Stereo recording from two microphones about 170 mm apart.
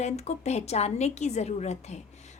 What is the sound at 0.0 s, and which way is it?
A woman's voice, 40° left (ahead or behind).